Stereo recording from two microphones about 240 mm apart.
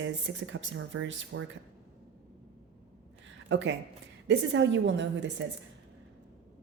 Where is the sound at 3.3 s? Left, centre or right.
Right.